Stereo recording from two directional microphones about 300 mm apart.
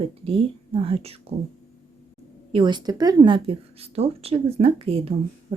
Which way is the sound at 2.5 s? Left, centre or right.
Centre.